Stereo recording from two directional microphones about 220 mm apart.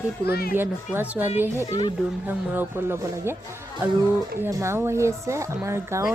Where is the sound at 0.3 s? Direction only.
45° left (ahead or behind).